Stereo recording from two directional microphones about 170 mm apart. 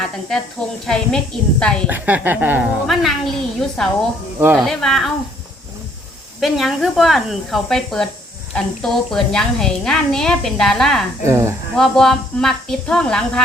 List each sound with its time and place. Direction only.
0.9 s a woman's voice: 5° left (ahead or behind)
1.9 s a woman's voice: 10° right (ahead or behind)
6.4 s a woman's voice: centre (ahead or behind)
11.3 s speech: 15° right (ahead or behind)
11.8 s a woman's voice: centre (ahead or behind)